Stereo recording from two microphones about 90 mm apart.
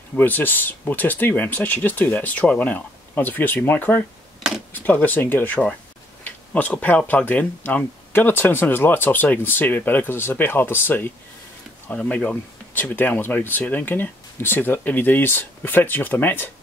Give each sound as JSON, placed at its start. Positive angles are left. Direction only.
{"t": 0.1, "sound": "speech", "side_deg": 20}